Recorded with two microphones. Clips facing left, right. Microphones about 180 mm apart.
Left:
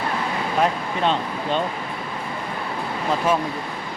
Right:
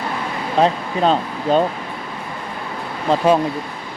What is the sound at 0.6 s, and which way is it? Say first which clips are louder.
Speech: right 5 dB; 30° right (ahead or behind).